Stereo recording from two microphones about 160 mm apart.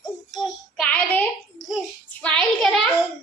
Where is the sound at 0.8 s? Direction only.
5° left (ahead or behind).